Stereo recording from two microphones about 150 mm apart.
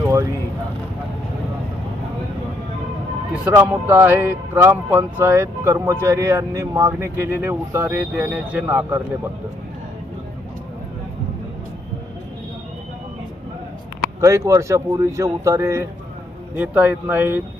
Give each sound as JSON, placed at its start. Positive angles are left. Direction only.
{"t": 0.0, "sound": "a sound", "side_deg": -20}
{"t": 3.4, "sound": "speech", "side_deg": -10}
{"t": 14.2, "sound": "speech", "side_deg": -20}